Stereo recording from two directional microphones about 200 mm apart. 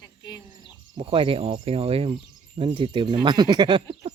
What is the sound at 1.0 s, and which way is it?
Speech, 25° right (ahead or behind).